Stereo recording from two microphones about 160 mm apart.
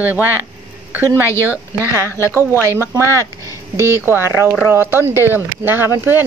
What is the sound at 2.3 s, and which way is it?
Speech, 15° right (ahead or behind).